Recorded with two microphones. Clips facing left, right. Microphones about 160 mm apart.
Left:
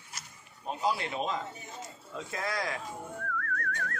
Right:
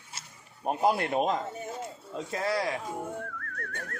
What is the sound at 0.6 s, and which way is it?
A man's voice, 55° right (ahead or behind).